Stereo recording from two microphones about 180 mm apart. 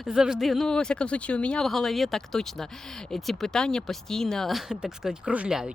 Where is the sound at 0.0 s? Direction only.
5° right (ahead or behind).